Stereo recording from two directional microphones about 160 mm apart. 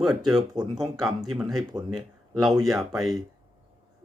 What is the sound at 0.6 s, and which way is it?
Speech, 25° right (ahead or behind).